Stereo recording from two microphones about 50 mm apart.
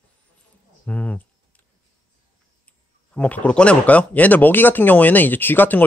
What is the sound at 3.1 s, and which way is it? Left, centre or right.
Speech, left.